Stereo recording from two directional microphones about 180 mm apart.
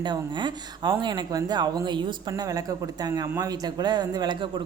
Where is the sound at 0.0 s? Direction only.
25° right (ahead or behind).